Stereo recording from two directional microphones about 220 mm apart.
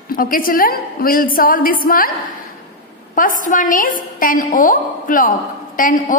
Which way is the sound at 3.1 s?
40° left (ahead or behind).